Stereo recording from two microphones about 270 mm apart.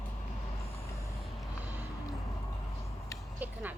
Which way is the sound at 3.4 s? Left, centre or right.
Centre.